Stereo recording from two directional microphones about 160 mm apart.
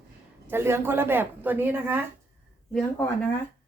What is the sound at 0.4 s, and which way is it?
Speech, 15° right (ahead or behind).